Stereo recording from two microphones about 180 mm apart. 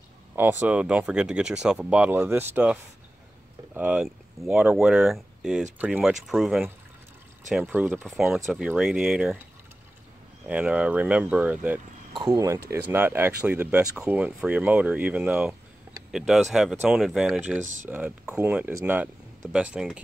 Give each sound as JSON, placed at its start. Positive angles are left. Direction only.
{"t": 0.4, "sound": "speech", "side_deg": -10}
{"t": 10.4, "sound": "speech", "side_deg": -5}
{"t": 12.1, "sound": "speech", "side_deg": -20}